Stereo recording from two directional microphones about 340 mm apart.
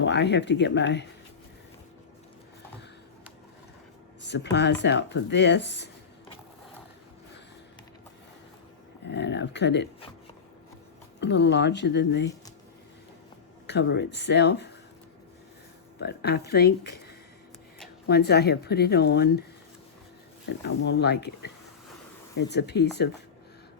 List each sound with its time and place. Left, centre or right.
0.0 s speech: left
4.2 s speech: left
9.0 s speech: left
11.2 s speech: left
13.7 s speech: left
16.0 s speech: left
20.7 s speech: left